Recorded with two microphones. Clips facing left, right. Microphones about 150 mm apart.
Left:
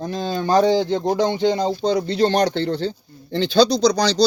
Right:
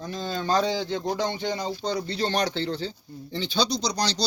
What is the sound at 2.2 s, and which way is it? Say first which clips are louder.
Speech: left 8 dB; 55° left (ahead or behind).